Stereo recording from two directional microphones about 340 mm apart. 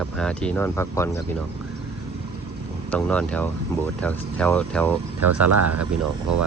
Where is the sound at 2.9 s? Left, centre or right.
Centre.